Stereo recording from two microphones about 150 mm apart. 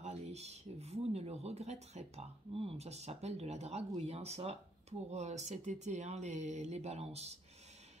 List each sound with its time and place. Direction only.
0.0 s speech: 45° right (ahead or behind)